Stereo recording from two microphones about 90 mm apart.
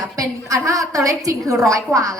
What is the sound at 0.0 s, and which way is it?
A woman's voice, 40° right (ahead or behind).